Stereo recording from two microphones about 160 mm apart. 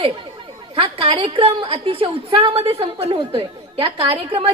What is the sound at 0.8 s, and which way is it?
A woman's voice, 35° right (ahead or behind).